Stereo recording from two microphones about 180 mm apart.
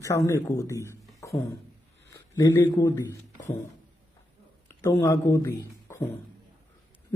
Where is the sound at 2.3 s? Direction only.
20° left (ahead or behind).